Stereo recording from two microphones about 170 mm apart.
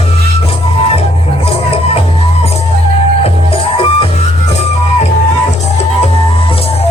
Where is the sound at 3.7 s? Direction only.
35° left (ahead or behind).